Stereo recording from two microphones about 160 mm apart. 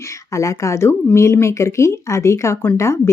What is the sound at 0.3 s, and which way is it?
Speech, 20° left (ahead or behind).